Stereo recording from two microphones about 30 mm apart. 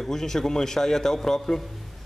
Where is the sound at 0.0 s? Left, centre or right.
Centre.